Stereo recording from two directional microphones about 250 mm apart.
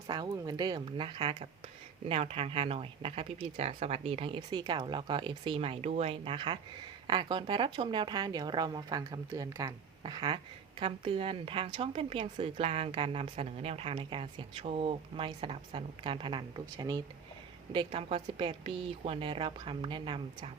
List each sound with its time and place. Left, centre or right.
0.1 s speech: centre